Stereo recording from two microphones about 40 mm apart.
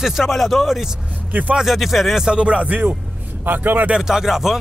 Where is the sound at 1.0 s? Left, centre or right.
Right.